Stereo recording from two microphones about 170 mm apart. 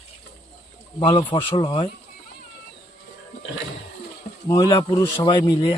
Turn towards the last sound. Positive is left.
turn(degrees=25)  # may be behind; listen again after turning